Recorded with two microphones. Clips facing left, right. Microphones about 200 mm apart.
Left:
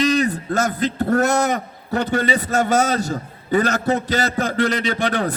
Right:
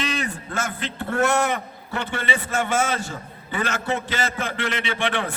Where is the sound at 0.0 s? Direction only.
40° left (ahead or behind).